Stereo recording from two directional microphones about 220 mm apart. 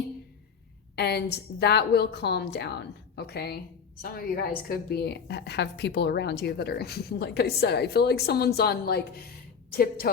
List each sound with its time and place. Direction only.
0.9 s a woman's voice: 50° left (ahead or behind)